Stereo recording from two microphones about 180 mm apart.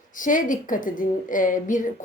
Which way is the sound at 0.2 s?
45° left (ahead or behind).